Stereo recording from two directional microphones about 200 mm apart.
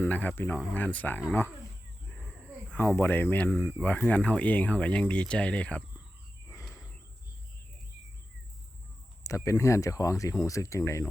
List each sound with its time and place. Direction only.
0.0 s speech: 10° left (ahead or behind)
2.7 s speech: 10° left (ahead or behind)
9.2 s speech: 15° left (ahead or behind)